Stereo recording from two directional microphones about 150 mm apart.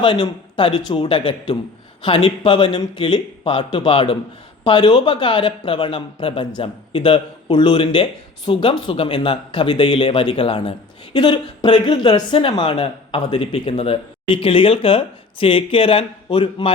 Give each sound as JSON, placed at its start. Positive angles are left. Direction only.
{"t": 0.0, "sound": "speech", "side_deg": 35}